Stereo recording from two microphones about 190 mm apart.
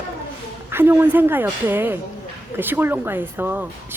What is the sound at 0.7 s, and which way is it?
Speech, 10° right (ahead or behind).